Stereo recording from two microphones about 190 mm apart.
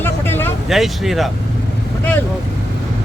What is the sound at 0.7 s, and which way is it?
Speech, centre (ahead or behind).